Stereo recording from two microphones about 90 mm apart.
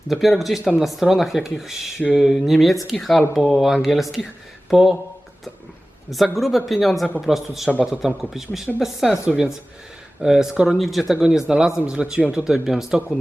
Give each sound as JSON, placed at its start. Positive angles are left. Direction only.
{"t": 0.1, "sound": "speech", "side_deg": 0}
{"t": 6.1, "sound": "speech", "side_deg": 0}